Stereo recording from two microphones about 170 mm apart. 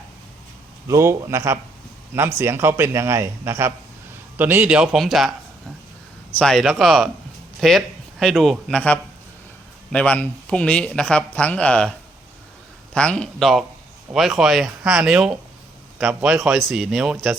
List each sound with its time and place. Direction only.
0.9 s a man's voice: 15° right (ahead or behind)
6.3 s speech: 5° left (ahead or behind)